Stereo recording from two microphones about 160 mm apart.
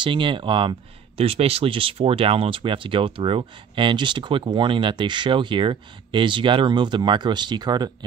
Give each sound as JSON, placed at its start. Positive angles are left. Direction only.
{"t": 0.0, "sound": "speech", "side_deg": -30}